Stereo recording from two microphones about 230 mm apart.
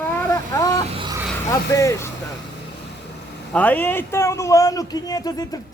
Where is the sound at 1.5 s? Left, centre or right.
Centre.